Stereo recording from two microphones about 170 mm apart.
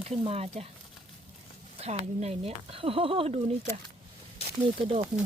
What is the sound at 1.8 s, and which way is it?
Speech, 40° right (ahead or behind).